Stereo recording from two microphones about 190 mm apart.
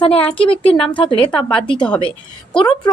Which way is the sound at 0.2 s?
5° left (ahead or behind).